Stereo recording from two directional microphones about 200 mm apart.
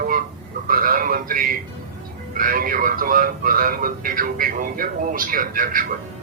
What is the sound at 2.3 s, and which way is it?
Speech, 45° right (ahead or behind).